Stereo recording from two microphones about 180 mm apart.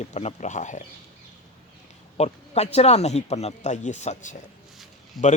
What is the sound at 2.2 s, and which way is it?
Speech, 35° left (ahead or behind).